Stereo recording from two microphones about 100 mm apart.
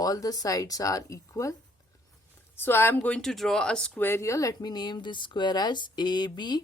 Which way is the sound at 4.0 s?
25° left (ahead or behind).